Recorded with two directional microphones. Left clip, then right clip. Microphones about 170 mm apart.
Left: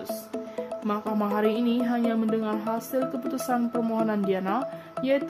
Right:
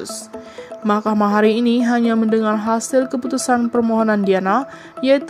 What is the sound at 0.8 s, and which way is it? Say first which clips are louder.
Speech: right 12 dB; 40° right (ahead or behind).